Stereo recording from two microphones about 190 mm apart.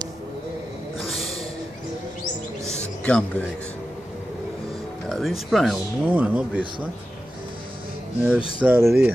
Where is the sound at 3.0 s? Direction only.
5° left (ahead or behind).